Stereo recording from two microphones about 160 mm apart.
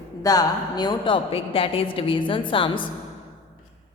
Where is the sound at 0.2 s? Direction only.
25° left (ahead or behind).